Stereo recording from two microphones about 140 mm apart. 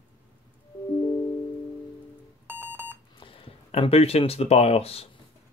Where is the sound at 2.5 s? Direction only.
15° right (ahead or behind).